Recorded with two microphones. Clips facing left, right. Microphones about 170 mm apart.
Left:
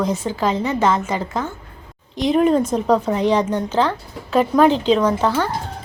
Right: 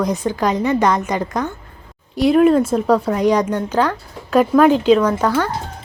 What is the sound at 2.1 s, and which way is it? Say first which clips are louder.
A woman's voice: right 3 dB; 10° right (ahead or behind).